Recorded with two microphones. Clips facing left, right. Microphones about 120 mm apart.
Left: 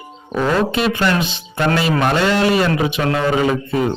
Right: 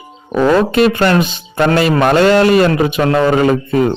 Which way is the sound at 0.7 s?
55° right (ahead or behind).